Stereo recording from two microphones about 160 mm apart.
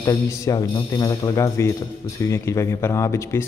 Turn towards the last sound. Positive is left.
turn(degrees=20)  # may be behind; listen again after turning